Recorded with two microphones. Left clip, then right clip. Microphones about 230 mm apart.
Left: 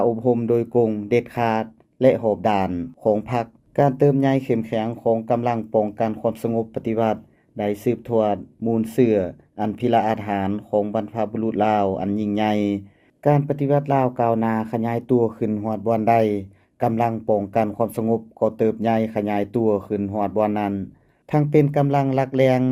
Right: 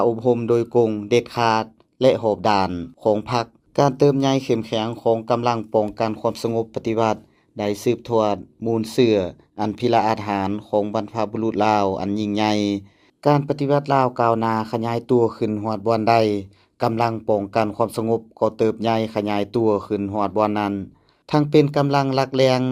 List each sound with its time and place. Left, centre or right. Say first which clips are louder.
0.0 s speech: right 1 dB; right